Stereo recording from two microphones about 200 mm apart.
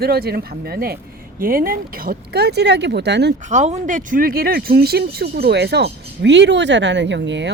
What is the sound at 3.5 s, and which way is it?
Speech, 35° right (ahead or behind).